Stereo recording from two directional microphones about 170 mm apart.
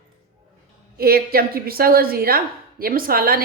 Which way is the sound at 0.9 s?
60° right (ahead or behind).